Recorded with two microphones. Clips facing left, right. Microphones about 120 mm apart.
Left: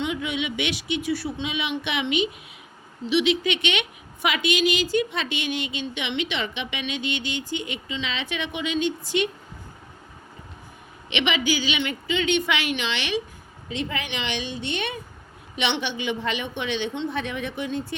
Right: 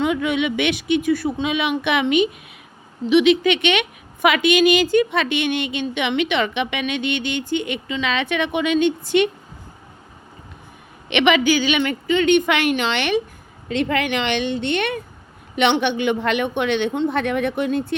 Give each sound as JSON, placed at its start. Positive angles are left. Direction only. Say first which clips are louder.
{"t": 0.0, "sound": "speech", "louder": "right 7 dB", "side_deg": -55}
{"t": 11.1, "sound": "a woman's voice", "louder": "right 8 dB", "side_deg": -60}